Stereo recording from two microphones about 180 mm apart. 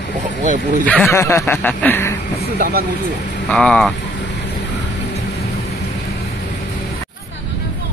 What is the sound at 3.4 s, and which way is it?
Speech, 5° left (ahead or behind).